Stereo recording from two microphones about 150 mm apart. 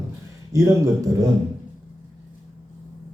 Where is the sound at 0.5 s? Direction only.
20° right (ahead or behind).